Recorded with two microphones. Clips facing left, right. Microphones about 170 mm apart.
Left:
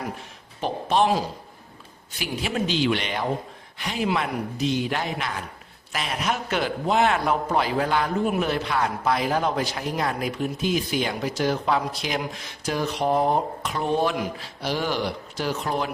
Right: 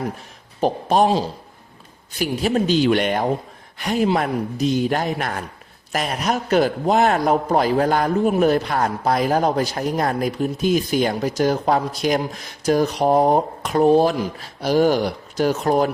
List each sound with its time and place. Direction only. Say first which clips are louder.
0.6 s a man's voice: right 5 dB; 40° right (ahead or behind)
2.1 s a man's voice: right 7 dB; 40° right (ahead or behind)